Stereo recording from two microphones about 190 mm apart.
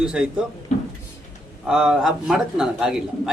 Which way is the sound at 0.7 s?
35° left (ahead or behind).